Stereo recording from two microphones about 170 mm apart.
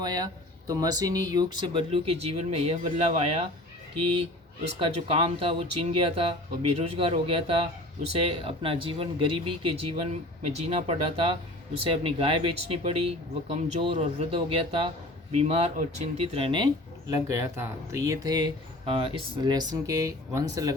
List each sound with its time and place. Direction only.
0.0 s speech: 25° right (ahead or behind)
4.8 s speech: 35° right (ahead or behind)
17.1 s speech: 15° right (ahead or behind)
18.9 s speech: 35° right (ahead or behind)